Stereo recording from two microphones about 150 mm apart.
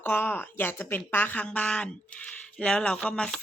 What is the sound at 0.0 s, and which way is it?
Speech, 10° left (ahead or behind).